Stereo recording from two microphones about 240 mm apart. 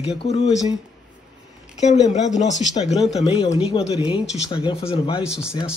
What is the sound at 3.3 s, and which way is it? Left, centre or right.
Speech, left.